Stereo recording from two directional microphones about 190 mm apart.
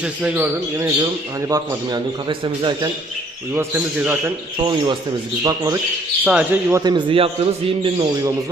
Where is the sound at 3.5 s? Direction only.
10° right (ahead or behind).